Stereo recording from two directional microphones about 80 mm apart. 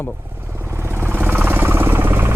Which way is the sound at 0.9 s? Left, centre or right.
Right.